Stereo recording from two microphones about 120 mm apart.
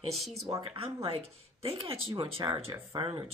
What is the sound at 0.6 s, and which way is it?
Speech, 50° right (ahead or behind).